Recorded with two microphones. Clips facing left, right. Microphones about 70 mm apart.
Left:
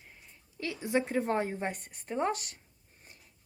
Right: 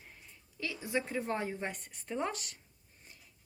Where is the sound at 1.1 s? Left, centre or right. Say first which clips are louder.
Left 5 dB; left.